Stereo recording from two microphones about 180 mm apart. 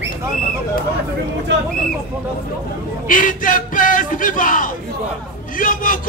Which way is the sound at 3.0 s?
50° left (ahead or behind).